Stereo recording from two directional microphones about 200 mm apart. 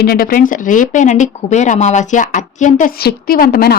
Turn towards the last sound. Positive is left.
turn(degrees=45)  # may be behind; listen again after turning